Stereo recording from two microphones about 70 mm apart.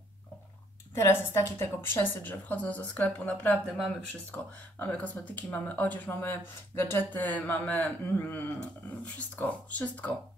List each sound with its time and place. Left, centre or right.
0.9 s speech: left